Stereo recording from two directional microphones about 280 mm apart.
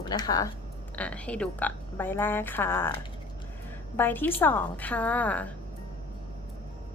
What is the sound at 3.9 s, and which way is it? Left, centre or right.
A woman's voice, centre.